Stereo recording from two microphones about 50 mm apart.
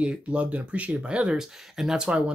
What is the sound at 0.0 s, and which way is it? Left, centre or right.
Speech, right.